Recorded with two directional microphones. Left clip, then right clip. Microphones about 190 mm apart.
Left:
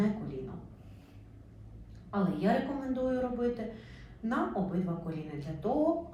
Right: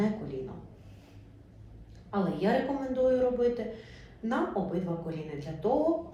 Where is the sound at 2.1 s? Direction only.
Centre (ahead or behind).